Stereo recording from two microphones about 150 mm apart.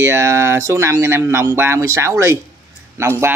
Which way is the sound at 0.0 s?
15° right (ahead or behind).